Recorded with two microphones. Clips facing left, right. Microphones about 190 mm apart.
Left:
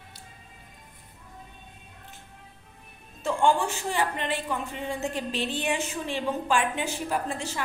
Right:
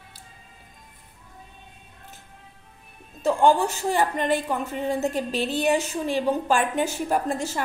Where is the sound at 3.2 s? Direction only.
40° right (ahead or behind).